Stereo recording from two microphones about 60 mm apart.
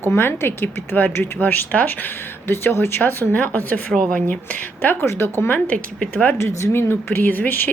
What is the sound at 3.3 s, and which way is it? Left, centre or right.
Speech, left.